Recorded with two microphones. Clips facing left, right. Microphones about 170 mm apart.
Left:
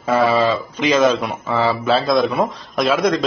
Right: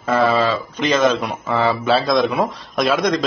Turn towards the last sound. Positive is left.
turn(degrees=0)  # may be behind; listen again after turning